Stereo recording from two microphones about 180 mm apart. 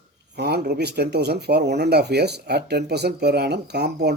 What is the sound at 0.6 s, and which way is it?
A man's voice, 65° right (ahead or behind).